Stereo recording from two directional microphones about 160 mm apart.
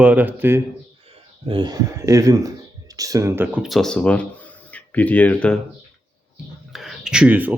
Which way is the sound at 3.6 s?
Centre (ahead or behind).